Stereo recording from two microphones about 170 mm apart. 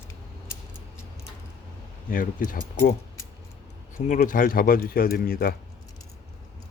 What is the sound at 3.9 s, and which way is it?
Speech, 45° left (ahead or behind).